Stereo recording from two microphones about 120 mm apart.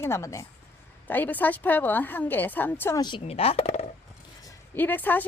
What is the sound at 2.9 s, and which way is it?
Speech, 40° left (ahead or behind).